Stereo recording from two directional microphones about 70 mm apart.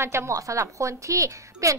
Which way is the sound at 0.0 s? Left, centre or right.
Right.